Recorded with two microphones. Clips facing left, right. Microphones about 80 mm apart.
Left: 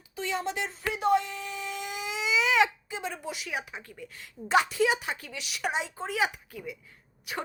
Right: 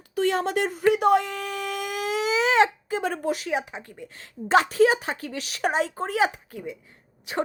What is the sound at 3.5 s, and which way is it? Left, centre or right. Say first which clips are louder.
A woman's voice: right 8 dB; right.